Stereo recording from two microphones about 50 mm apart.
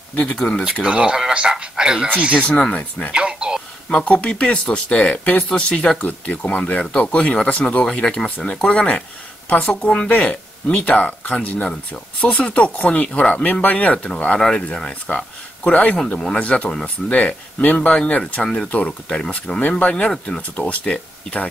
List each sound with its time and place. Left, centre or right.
0.2 s speech: centre
0.8 s speech: centre
2.4 s speech: left
3.1 s a sound: centre
4.0 s speech: left
6.0 s speech: left
6.8 s speech: centre
11.0 s speech: left; by 19.6 s centre
19.8 s speech: left